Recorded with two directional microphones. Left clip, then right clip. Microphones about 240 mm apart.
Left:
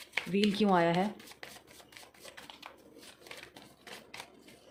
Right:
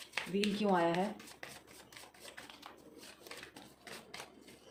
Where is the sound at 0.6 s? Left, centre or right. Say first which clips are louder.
Left 4 dB; left.